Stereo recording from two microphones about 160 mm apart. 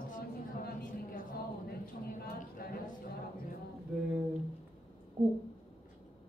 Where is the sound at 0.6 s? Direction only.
70° left (ahead or behind).